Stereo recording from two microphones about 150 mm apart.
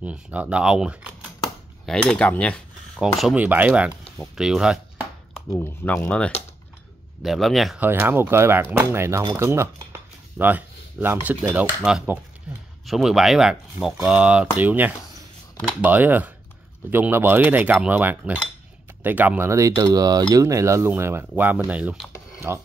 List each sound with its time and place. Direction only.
0.0 s speech: 10° right (ahead or behind)
1.9 s speech: 5° left (ahead or behind)
3.2 s speech: 5° right (ahead or behind)
5.5 s speech: 15° left (ahead or behind); by 7.8 s centre (ahead or behind)
7.8 s speech: 15° right (ahead or behind)
19.7 s cutlery: 25° right (ahead or behind)
21.6 s speech: 10° right (ahead or behind)